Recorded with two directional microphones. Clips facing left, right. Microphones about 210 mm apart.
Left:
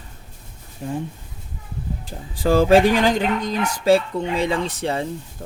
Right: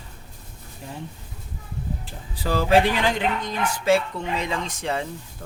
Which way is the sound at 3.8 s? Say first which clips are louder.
Left 4 dB; 30° left (ahead or behind).